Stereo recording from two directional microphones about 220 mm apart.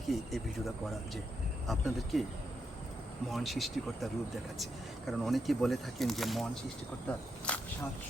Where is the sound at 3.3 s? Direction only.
Centre (ahead or behind).